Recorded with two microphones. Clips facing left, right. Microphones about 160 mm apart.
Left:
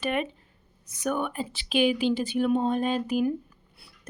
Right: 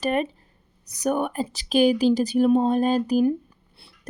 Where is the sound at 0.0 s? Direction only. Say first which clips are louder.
Right 4 dB; 40° right (ahead or behind).